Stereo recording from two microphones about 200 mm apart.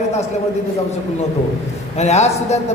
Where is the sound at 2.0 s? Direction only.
35° left (ahead or behind).